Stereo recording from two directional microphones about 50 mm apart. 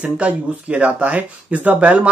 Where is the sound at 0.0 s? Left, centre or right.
Right.